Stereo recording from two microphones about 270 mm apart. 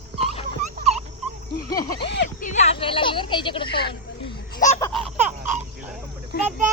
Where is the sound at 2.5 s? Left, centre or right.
Left.